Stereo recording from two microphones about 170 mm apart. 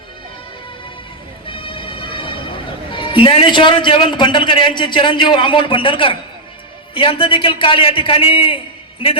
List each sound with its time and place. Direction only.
1.5 s music: 30° left (ahead or behind)
2.9 s a man's voice: 30° left (ahead or behind)